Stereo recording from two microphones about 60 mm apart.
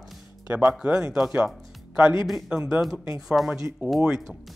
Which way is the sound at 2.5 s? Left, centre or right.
Centre.